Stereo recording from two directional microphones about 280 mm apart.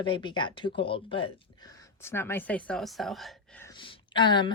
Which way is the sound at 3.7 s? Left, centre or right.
Centre.